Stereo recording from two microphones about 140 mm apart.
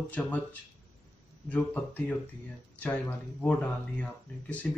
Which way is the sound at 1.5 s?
10° left (ahead or behind).